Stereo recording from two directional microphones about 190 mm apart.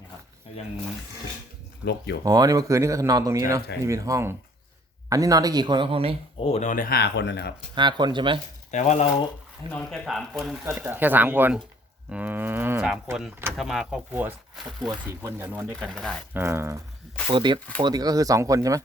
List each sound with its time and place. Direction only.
1.8 s speech: 60° left (ahead or behind)
2.2 s speech: 20° right (ahead or behind)
6.4 s speech: 35° left (ahead or behind); by 7.5 s 65° left (ahead or behind)
7.8 s speech: 25° right (ahead or behind)
8.7 s speech: 35° left (ahead or behind)
9.6 s speech: 5° left (ahead or behind)
10.6 s speech: 10° right (ahead or behind)
14.8 s speech: 15° right (ahead or behind)
15.7 s speech: centre (ahead or behind)
16.3 s speech: 15° right (ahead or behind)
17.2 s speech: 25° right (ahead or behind)